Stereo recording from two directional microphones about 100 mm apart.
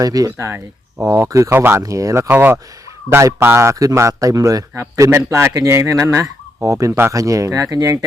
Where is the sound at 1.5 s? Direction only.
20° right (ahead or behind).